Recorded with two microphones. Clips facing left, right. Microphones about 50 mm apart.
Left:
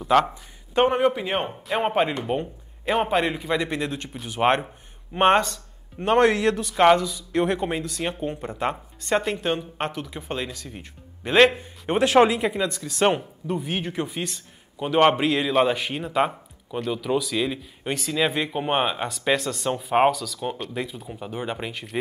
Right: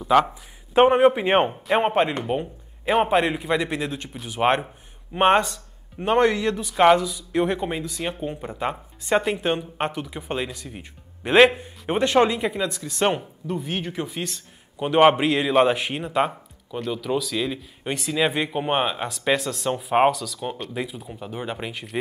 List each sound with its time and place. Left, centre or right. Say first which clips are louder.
0.0 s speech: right 1 dB; centre
0.7 s a man's voice: right 4 dB; centre
1.2 s a man's voice: right 7 dB; right
1.9 s a man's voice: right 1 dB; centre
14.8 s a man's voice: right 2 dB; centre